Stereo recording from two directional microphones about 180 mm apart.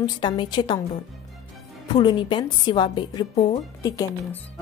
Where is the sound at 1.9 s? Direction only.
25° left (ahead or behind).